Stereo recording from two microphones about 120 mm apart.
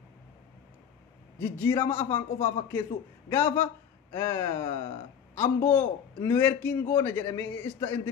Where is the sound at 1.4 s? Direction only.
20° left (ahead or behind).